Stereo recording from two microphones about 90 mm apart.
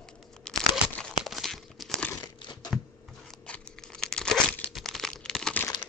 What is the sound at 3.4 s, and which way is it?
Tearing, 10° left (ahead or behind).